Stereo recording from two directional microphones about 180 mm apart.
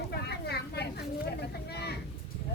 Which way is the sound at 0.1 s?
65° left (ahead or behind).